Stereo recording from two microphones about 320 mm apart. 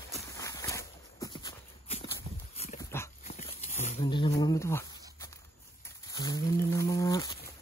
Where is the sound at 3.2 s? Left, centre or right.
Left.